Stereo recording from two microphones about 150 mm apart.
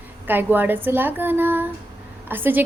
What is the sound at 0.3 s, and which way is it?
A woman's voice, 15° right (ahead or behind).